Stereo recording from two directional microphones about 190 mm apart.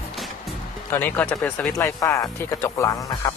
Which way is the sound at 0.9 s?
10° left (ahead or behind).